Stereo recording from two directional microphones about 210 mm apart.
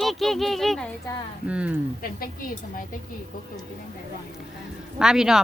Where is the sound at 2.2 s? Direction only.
40° left (ahead or behind).